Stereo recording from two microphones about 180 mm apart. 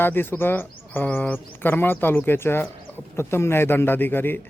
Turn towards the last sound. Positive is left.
turn(degrees=10)  # may be behind; listen again after turning